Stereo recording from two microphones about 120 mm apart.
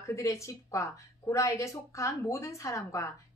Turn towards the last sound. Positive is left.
turn(degrees=25)  # may be behind; listen again after turning